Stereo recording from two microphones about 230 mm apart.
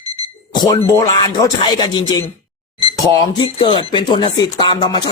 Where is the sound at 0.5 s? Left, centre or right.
Centre.